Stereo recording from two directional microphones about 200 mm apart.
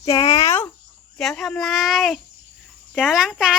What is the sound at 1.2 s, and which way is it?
A child's voice, centre (ahead or behind).